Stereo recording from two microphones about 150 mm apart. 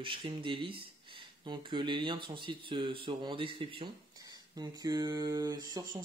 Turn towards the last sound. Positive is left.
turn(degrees=-25)  # may be behind; listen again after turning